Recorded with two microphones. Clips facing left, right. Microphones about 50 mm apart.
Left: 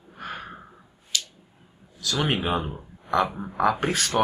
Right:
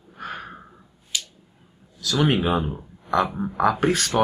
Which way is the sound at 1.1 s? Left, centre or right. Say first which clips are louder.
Even; centre.